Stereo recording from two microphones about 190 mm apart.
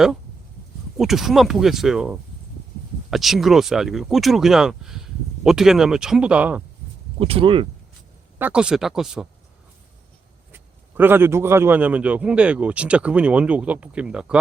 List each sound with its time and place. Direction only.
0.9 s speech: centre (ahead or behind)
7.2 s speech: 30° right (ahead or behind)
8.4 s speech: 5° right (ahead or behind)
10.5 s a man's voice: 10° right (ahead or behind)